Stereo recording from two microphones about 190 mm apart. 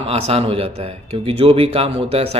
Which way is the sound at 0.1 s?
30° right (ahead or behind).